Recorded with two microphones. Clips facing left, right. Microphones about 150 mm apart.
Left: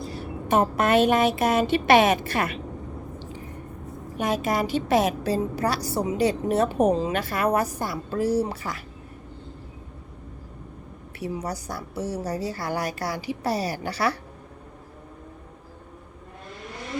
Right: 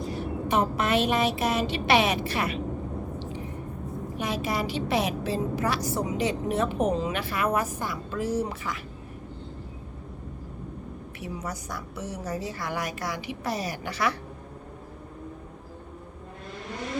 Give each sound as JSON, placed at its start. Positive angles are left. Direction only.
{"t": 0.4, "sound": "speech", "side_deg": 50}
{"t": 4.2, "sound": "a woman's voice", "side_deg": 50}
{"t": 11.2, "sound": "a woman's voice", "side_deg": 35}